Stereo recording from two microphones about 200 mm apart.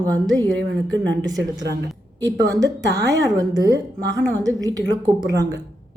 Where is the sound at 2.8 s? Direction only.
60° right (ahead or behind).